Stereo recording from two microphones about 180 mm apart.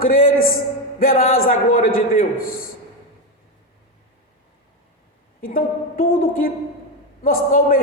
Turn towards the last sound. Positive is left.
turn(degrees=50)  # may be behind; listen again after turning